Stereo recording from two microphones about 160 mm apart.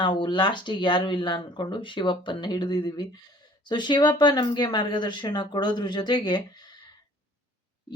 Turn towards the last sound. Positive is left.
turn(degrees=25)  # may be behind; listen again after turning